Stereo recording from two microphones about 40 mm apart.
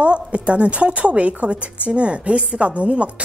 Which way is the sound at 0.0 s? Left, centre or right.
Right.